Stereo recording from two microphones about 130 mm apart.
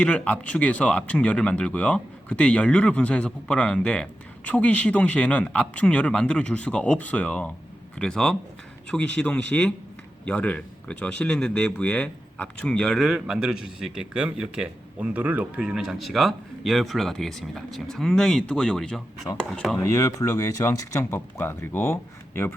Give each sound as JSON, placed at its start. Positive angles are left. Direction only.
{"t": 0.0, "sound": "speech", "side_deg": 10}
{"t": 19.8, "sound": "speech", "side_deg": 25}